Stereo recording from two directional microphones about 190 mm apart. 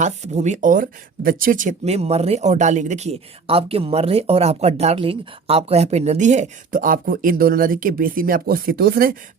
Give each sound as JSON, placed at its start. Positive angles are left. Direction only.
{"t": 0.0, "sound": "speech", "side_deg": -40}